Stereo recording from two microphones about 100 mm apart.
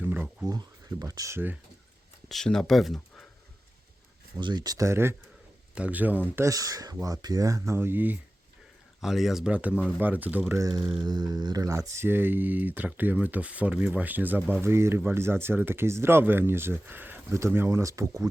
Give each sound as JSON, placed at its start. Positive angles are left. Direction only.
{"t": 0.0, "sound": "a sound", "side_deg": -20}
{"t": 0.4, "sound": "speech", "side_deg": -40}
{"t": 2.3, "sound": "speech", "side_deg": 5}
{"t": 4.4, "sound": "speech", "side_deg": -50}
{"t": 5.7, "sound": "speech", "side_deg": -15}
{"t": 6.4, "sound": "speech", "side_deg": -35}
{"t": 9.0, "sound": "speech", "side_deg": 0}
{"t": 10.6, "sound": "speech", "side_deg": -35}
{"t": 11.9, "sound": "speech", "side_deg": -20}